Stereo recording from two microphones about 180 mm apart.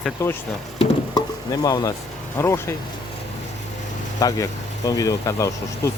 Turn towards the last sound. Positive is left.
turn(degrees=15)  # may be behind; listen again after turning